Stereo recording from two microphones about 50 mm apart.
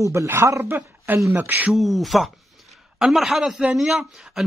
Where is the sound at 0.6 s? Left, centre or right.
Right.